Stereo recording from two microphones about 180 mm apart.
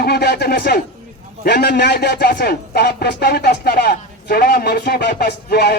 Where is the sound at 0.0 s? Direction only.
60° left (ahead or behind).